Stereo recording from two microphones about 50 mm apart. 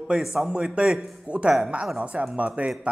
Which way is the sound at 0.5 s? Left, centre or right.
Right.